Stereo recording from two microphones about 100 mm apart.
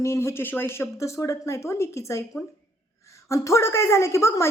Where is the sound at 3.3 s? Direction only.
30° left (ahead or behind).